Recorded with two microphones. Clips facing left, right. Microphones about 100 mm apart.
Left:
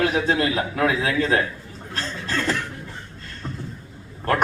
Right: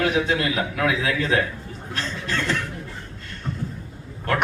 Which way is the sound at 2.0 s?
35° left (ahead or behind).